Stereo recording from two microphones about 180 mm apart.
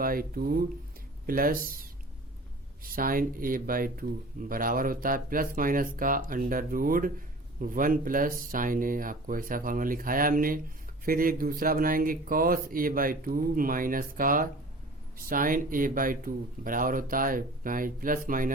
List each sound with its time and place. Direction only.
0.0 s speech: 55° right (ahead or behind)